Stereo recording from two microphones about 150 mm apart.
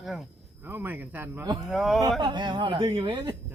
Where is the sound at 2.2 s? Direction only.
30° right (ahead or behind).